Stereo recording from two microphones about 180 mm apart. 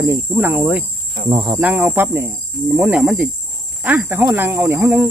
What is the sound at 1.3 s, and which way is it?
Speech, 25° right (ahead or behind).